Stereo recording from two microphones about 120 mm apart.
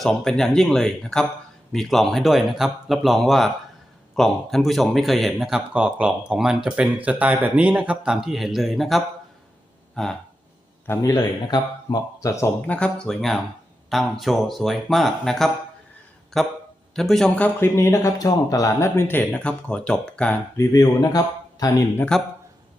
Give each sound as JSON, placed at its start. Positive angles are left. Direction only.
{"t": 0.0, "sound": "speech", "side_deg": 5}
{"t": 10.8, "sound": "speech", "side_deg": 25}
{"t": 12.6, "sound": "speech", "side_deg": 10}
{"t": 17.6, "sound": "speech", "side_deg": 25}
{"t": 20.6, "sound": "speech", "side_deg": 30}